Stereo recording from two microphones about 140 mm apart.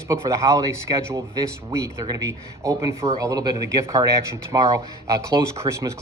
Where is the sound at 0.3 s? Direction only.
25° right (ahead or behind).